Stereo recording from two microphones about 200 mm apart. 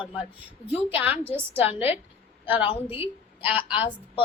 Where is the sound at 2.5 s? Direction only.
25° left (ahead or behind).